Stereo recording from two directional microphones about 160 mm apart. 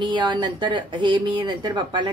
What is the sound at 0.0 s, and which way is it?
A woman's voice, 30° right (ahead or behind).